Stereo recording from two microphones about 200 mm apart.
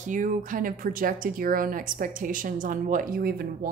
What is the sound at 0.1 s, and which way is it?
Speech, 40° right (ahead or behind).